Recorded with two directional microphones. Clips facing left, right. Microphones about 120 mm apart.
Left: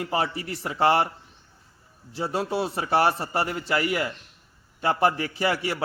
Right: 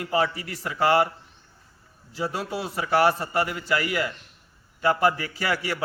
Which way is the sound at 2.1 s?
30° left (ahead or behind).